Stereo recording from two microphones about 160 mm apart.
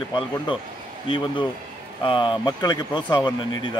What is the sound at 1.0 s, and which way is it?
Speech, 30° left (ahead or behind).